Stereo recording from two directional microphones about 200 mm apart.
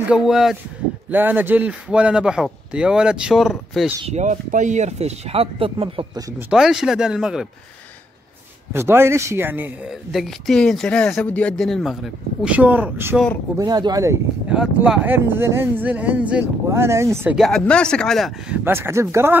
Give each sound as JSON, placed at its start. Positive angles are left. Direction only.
{"t": 0.1, "sound": "speech", "side_deg": 0}
{"t": 4.0, "sound": "speech", "side_deg": -35}
{"t": 6.5, "sound": "speech", "side_deg": -5}
{"t": 8.7, "sound": "speech", "side_deg": -10}
{"t": 13.6, "sound": "speech", "side_deg": -20}
{"t": 14.5, "sound": "speech", "side_deg": -5}
{"t": 17.4, "sound": "speech", "side_deg": 5}
{"t": 18.6, "sound": "speech", "side_deg": -10}